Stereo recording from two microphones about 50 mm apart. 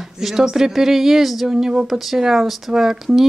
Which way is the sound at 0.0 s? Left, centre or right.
Centre.